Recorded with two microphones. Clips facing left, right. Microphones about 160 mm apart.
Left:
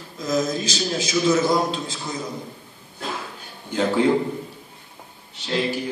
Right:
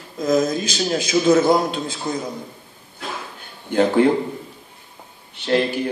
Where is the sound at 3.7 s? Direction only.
60° right (ahead or behind).